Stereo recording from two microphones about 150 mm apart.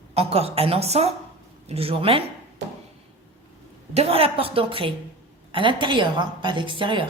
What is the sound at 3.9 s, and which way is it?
A woman's voice, 40° right (ahead or behind).